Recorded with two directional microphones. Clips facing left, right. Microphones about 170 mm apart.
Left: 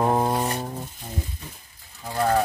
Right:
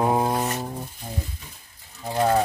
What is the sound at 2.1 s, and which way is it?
Speech, 20° right (ahead or behind).